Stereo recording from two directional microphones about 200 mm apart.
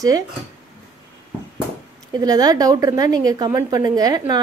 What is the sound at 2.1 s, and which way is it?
A woman's voice, 20° right (ahead or behind).